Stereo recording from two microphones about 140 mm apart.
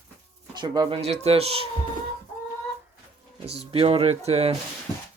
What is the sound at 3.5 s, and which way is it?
Speech, 45° right (ahead or behind).